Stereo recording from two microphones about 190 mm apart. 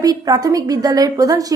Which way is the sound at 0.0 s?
20° right (ahead or behind).